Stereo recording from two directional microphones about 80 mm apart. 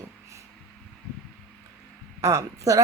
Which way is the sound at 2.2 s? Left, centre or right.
Right.